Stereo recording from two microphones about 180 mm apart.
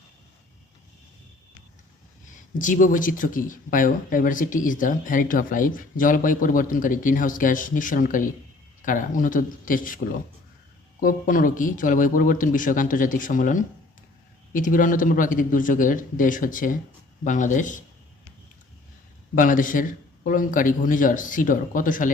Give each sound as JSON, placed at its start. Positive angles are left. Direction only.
{"t": 2.6, "sound": "speech", "side_deg": 45}
{"t": 11.0, "sound": "speech", "side_deg": 50}
{"t": 19.4, "sound": "speech", "side_deg": 50}